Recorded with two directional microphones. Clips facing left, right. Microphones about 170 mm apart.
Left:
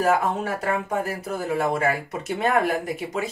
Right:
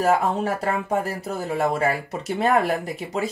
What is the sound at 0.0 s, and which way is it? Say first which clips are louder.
Speech: right 1 dB; 30° right (ahead or behind).